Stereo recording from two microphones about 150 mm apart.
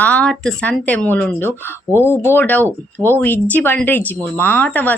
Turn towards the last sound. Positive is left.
turn(degrees=10)  # may be behind; listen again after turning